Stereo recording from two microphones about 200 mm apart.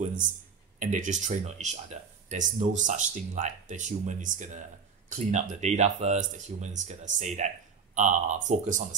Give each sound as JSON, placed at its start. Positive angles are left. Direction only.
{"t": 0.7, "sound": "speech", "side_deg": -40}